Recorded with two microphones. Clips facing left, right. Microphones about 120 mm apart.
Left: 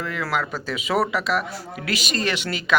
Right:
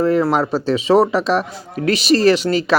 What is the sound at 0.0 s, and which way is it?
Speech, 35° right (ahead or behind).